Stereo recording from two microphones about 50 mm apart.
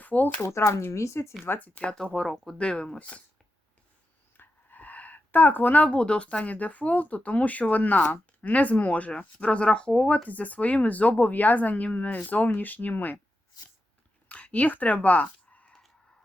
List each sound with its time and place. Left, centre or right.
0.0 s shuffling cards: left
0.4 s speech: left
1.5 s speech: left
2.1 s speech: centre
2.6 s speech: centre
4.4 s a sound: left
5.9 s speech: left
10.2 s speech: left
14.3 s speech: left